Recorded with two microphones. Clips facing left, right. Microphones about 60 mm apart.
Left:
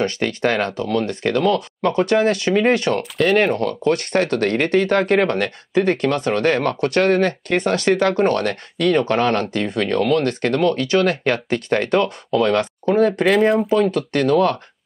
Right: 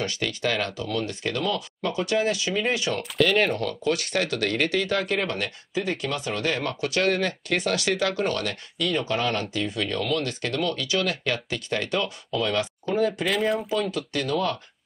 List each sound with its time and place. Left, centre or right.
0.0 s speech: left
13.2 s speech: left